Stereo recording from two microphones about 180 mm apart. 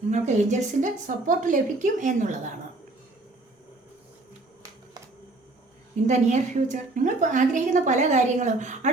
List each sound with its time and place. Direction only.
0.1 s a woman's voice: 40° right (ahead or behind)
6.1 s a woman's voice: 40° right (ahead or behind)